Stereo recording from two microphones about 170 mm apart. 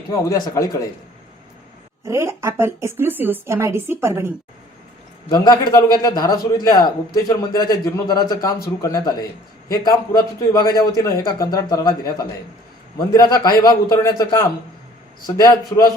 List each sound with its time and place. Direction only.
0.1 s a man's voice: 20° left (ahead or behind)
2.0 s speech: 15° right (ahead or behind)
5.3 s a man's voice: 20° left (ahead or behind)
13.1 s a man's voice: 20° left (ahead or behind)